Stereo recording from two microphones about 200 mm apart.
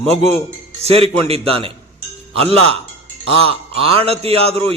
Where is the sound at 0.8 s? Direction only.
30° right (ahead or behind).